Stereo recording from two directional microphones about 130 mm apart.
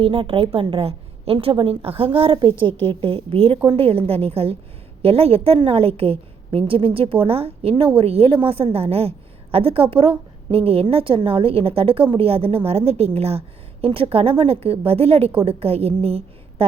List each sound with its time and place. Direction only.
0.0 s a woman's voice: 45° right (ahead or behind)